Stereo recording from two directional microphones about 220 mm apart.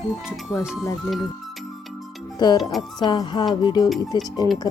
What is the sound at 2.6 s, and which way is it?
Speech, centre (ahead or behind).